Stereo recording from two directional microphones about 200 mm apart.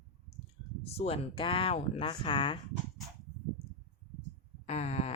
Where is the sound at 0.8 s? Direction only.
30° left (ahead or behind).